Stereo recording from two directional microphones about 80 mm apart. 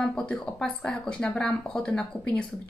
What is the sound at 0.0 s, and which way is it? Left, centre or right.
Speech, centre.